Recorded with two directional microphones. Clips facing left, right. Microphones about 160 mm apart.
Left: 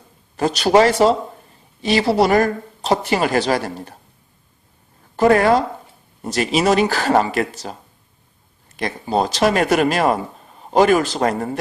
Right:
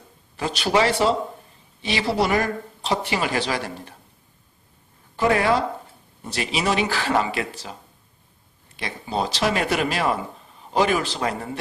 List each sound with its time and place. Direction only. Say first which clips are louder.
0.3 s a woman's voice: left 7 dB; 40° left (ahead or behind)
5.1 s speech: left 6 dB; 45° left (ahead or behind)